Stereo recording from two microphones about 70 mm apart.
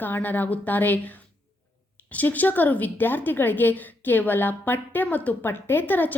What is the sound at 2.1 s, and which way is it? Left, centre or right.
A woman's voice, left.